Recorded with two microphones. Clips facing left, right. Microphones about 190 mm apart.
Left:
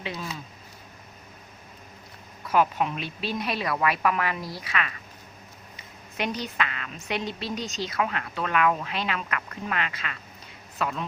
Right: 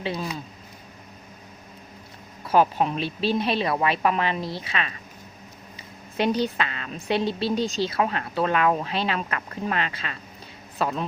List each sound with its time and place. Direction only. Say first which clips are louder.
0.0 s a woman's voice: right 6 dB; 35° right (ahead or behind)
2.5 s a woman's voice: right 3 dB; 30° right (ahead or behind)